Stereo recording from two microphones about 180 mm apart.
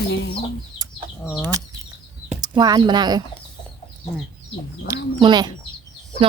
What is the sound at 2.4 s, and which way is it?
Speech, 20° right (ahead or behind).